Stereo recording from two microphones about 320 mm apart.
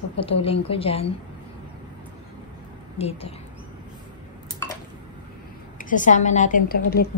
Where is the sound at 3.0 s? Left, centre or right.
Centre.